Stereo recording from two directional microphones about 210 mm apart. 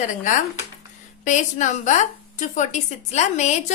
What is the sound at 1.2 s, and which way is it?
A woman's voice, 35° left (ahead or behind).